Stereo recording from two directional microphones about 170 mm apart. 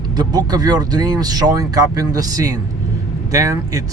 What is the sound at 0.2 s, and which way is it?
Speech, 25° right (ahead or behind).